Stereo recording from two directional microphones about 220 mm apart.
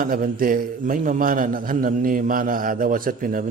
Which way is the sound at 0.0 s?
40° right (ahead or behind).